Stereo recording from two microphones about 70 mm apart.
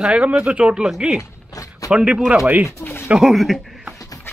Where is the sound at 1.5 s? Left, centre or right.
Left.